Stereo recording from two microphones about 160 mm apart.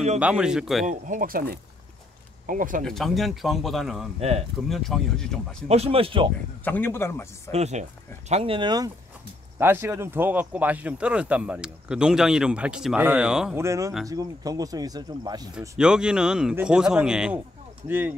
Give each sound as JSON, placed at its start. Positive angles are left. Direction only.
{"t": 0.2, "sound": "speech", "side_deg": -5}
{"t": 0.8, "sound": "speech", "side_deg": -55}
{"t": 2.8, "sound": "speech", "side_deg": 0}
{"t": 5.7, "sound": "speech", "side_deg": -40}
{"t": 6.6, "sound": "a man's voice", "side_deg": 10}
{"t": 7.5, "sound": "speech", "side_deg": -45}
{"t": 9.6, "sound": "speech", "side_deg": -15}
{"t": 13.6, "sound": "speech", "side_deg": -20}
{"t": 15.8, "sound": "speech", "side_deg": -5}